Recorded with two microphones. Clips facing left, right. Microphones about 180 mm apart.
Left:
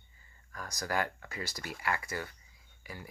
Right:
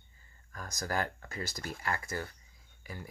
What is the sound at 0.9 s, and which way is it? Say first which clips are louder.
Speech: left 1 dB; 45° right (ahead or behind).